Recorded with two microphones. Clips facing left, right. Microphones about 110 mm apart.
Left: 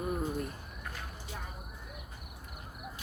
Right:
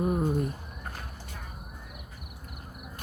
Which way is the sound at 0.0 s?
25° right (ahead or behind).